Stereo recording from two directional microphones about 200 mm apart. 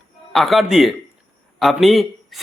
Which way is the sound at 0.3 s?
Centre (ahead or behind).